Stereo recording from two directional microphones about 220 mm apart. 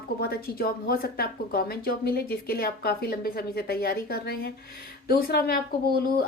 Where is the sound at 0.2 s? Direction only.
45° left (ahead or behind).